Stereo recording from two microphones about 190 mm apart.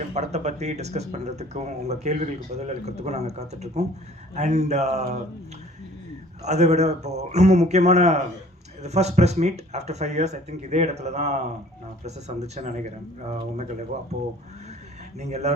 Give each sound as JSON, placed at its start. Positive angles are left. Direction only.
{"t": 0.1, "sound": "speech", "side_deg": -35}
{"t": 6.4, "sound": "speech", "side_deg": -35}
{"t": 15.2, "sound": "speech", "side_deg": -35}